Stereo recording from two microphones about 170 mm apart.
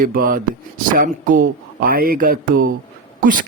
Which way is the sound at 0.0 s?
55° right (ahead or behind).